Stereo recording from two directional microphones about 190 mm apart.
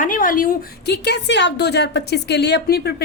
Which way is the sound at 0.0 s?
45° left (ahead or behind).